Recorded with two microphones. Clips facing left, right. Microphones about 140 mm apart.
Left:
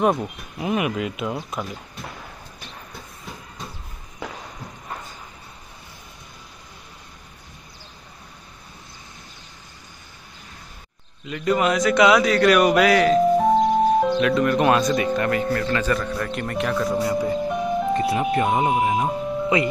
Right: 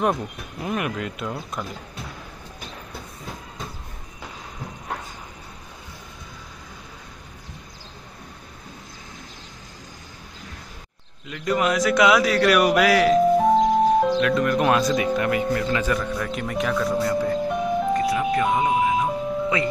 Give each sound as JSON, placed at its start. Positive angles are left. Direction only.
{"t": 0.0, "sound": "speech", "side_deg": 10}
{"t": 11.2, "sound": "a man's voice", "side_deg": 0}
{"t": 17.5, "sound": "music", "side_deg": 0}
{"t": 17.9, "sound": "speech", "side_deg": 25}